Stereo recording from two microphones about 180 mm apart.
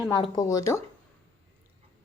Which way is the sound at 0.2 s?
20° left (ahead or behind).